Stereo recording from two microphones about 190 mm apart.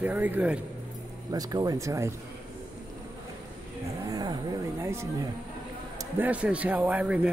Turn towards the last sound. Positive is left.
turn(degrees=-5)  # may be behind; listen again after turning